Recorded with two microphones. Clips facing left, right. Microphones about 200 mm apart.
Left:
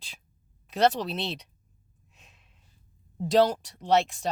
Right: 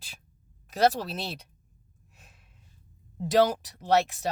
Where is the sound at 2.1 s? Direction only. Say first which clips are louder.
Right 1 dB; 5° right (ahead or behind).